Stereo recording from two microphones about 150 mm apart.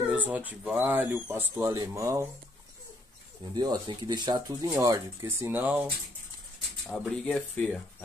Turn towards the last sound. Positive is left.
turn(degrees=5)  # may be behind; listen again after turning